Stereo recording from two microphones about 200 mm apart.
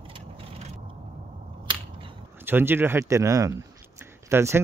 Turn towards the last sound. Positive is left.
turn(degrees=-15)  # may be behind; listen again after turning